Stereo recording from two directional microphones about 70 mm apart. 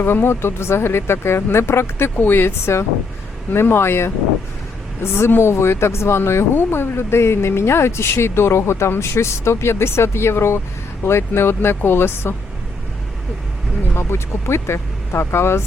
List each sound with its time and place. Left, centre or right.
0.0 s speech: left
5.1 s speech: left
13.9 s speech: left